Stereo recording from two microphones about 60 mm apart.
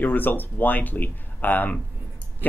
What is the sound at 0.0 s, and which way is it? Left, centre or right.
Speech, left.